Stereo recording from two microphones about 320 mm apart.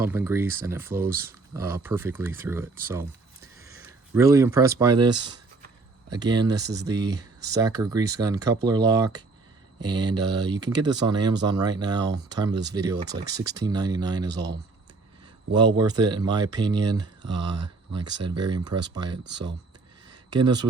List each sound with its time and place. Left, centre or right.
0.0 s speech: centre
14.3 s speech: right
15.5 s speech: centre
20.3 s speech: centre